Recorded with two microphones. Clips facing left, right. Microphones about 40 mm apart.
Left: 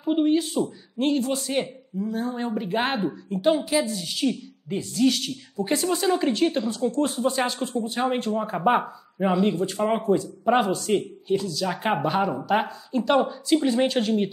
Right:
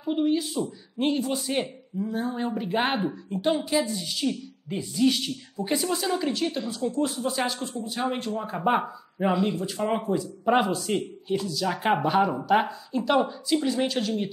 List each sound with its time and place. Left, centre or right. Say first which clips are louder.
0.0 s speech: left 3 dB; centre
0.9 s a woman's voice: left 2 dB; centre
2.0 s hoot: left 1 dB; centre
2.3 s a woman's voice: left 1 dB; centre
4.6 s hoot: left 1 dB; centre
5.6 s a woman's voice: left 3 dB; centre
5.9 s speech: left 5 dB; centre
6.6 s a woman's voice: left 3 dB; centre
7.6 s speech: left 4 dB; left
8.8 s speech: left 1 dB; centre
9.4 s a woman's voice: left 4 dB; centre